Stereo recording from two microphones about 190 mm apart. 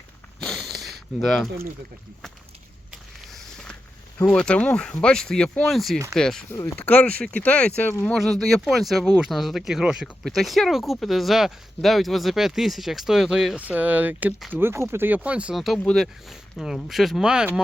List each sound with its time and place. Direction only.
0.3 s a sound: 5° left (ahead or behind)
2.9 s vehicle: centre (ahead or behind)
4.2 s speech: 5° left (ahead or behind)
6.5 s speech: 15° left (ahead or behind)
14.6 s speech: 10° right (ahead or behind)